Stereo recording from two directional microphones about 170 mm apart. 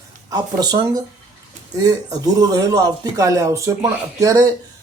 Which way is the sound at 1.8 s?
20° right (ahead or behind).